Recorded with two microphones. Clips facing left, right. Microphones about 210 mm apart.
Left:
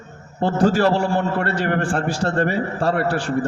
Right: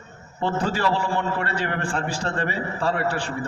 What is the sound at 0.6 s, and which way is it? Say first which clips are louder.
A man's voice: left 9 dB; 45° left (ahead or behind).